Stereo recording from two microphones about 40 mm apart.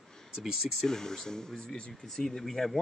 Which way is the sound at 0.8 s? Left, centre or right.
Centre.